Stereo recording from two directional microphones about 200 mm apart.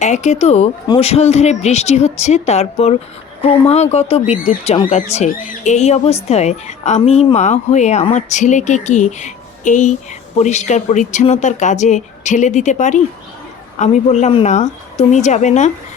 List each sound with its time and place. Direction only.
0.0 s speech: 35° left (ahead or behind)